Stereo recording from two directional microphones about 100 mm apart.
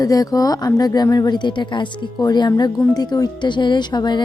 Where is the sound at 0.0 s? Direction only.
40° left (ahead or behind).